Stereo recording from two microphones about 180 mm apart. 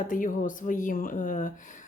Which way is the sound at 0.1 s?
50° left (ahead or behind).